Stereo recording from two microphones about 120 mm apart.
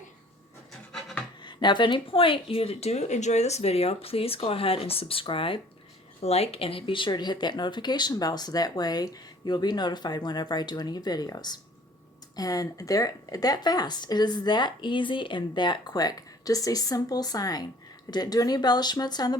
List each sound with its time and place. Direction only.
0.9 s a sound: 5° left (ahead or behind)
1.5 s speech: 40° left (ahead or behind)
6.2 s speech: 60° left (ahead or behind); by 19.4 s 35° left (ahead or behind)